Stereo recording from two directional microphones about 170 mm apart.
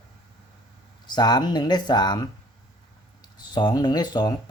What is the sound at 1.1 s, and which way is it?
Speech, 25° left (ahead or behind).